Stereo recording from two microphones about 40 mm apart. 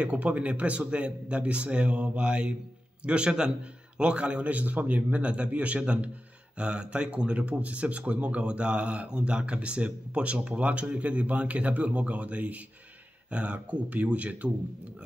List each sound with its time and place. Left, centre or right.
0.1 s a man's voice: right